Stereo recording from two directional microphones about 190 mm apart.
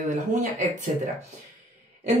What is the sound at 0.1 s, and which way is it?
Speech, 40° right (ahead or behind).